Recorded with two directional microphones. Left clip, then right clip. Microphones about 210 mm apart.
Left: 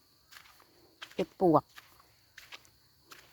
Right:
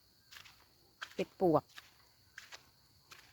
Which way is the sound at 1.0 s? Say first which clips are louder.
Even; 20° left (ahead or behind).